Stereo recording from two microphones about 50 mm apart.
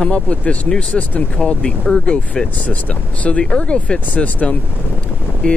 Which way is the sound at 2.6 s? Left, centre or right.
Left.